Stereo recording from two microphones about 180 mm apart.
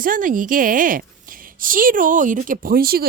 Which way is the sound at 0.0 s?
50° right (ahead or behind).